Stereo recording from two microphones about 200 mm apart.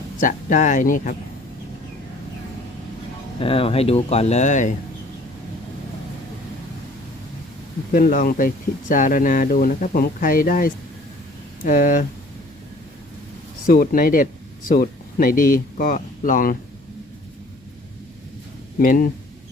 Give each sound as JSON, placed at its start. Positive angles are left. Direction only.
{"t": 0.2, "sound": "speech", "side_deg": 40}
{"t": 3.4, "sound": "speech", "side_deg": 30}
{"t": 7.9, "sound": "speech", "side_deg": 45}
{"t": 13.7, "sound": "speech", "side_deg": 45}
{"t": 18.8, "sound": "speech", "side_deg": 45}